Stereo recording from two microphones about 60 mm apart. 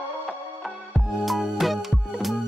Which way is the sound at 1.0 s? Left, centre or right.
Centre.